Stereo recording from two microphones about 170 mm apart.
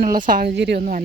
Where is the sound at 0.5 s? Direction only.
85° right.